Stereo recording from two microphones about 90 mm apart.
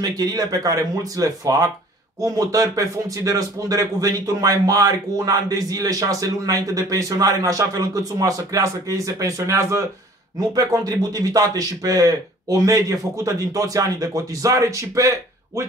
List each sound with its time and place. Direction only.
0.0 s speech: 45° right (ahead or behind)
10.5 s speech: 45° right (ahead or behind)